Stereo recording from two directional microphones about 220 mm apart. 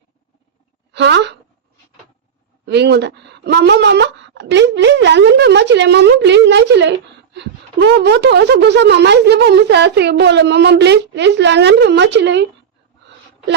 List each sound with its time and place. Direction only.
0.9 s speech: 50° right (ahead or behind)
2.6 s speech: 50° right (ahead or behind)